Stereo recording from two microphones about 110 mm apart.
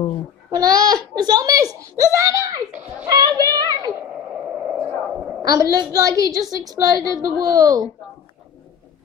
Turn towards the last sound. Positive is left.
turn(degrees=-35)  # may be behind; listen again after turning